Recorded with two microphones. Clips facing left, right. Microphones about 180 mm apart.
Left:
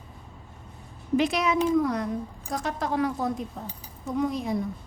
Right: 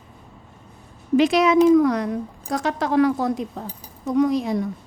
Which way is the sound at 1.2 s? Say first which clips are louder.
Right 8 dB; 90° right.